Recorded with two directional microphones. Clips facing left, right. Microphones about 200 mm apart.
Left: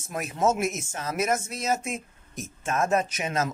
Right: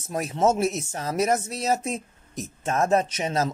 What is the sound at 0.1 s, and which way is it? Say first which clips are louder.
Speech: right 3 dB; 30° right (ahead or behind).